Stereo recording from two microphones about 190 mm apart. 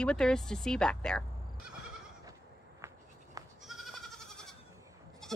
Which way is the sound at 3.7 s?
Centre (ahead or behind).